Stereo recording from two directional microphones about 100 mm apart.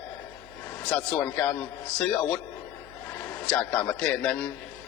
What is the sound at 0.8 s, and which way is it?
Speech, 10° left (ahead or behind).